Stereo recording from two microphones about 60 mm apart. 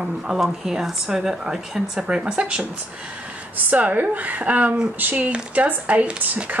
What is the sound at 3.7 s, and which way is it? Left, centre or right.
Speech, right.